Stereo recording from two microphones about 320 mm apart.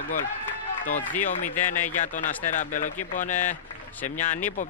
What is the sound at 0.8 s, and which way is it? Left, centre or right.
Speech, left.